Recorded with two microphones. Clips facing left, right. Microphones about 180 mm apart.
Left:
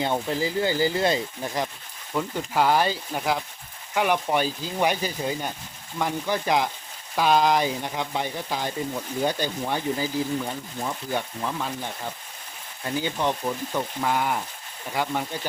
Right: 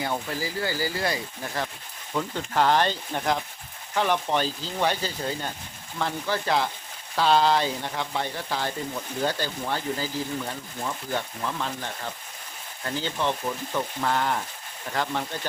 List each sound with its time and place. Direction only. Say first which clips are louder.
0.0 s speech: left 4 dB; 25° left (ahead or behind)
2.1 s speech: left 1 dB; 10° left (ahead or behind)